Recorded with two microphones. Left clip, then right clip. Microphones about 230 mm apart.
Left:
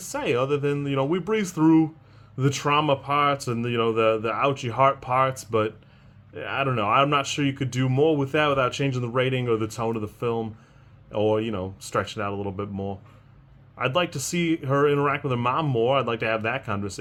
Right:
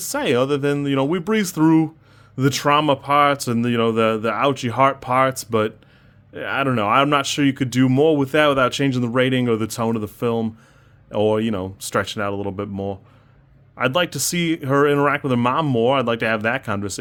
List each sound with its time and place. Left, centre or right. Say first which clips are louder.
0.0 s speech: right 5 dB; right